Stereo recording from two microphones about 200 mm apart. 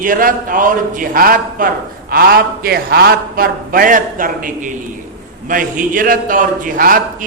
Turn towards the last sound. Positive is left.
turn(degrees=-45)  # may be behind; listen again after turning